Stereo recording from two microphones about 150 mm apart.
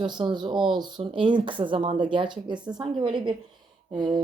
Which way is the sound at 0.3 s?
30° right (ahead or behind).